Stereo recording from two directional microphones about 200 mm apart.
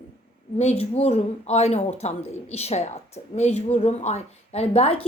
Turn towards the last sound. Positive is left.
turn(degrees=30)  # may be behind; listen again after turning